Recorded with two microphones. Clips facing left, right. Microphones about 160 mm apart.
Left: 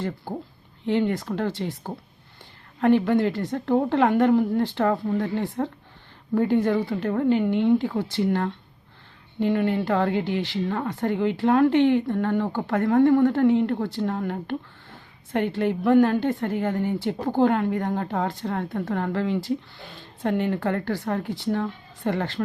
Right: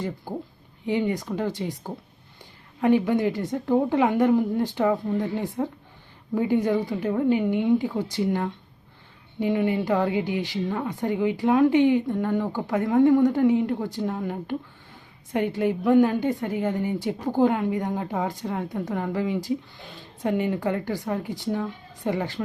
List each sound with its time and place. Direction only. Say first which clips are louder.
0.9 s speech: left 2 dB; 10° right (ahead or behind)
2.8 s speech: left 1 dB; 15° right (ahead or behind)